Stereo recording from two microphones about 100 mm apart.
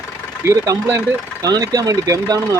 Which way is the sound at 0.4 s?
35° right (ahead or behind).